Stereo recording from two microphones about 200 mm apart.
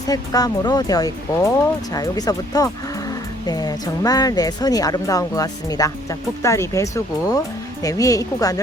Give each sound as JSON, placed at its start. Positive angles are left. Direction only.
{"t": 0.1, "sound": "speech", "side_deg": 20}